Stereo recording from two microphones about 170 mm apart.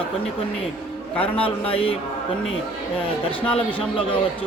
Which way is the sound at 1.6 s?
35° left (ahead or behind).